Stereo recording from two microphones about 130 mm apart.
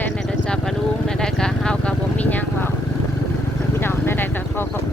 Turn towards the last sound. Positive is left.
turn(degrees=15)  # may be behind; listen again after turning